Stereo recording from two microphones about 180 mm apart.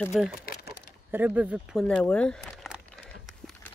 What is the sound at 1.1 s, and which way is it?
Speech, 10° right (ahead or behind).